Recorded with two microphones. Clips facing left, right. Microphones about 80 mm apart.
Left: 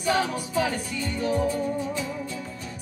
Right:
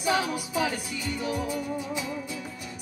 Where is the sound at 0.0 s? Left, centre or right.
Centre.